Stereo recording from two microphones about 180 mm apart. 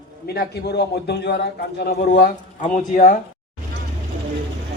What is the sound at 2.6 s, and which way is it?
Speech, 45° left (ahead or behind).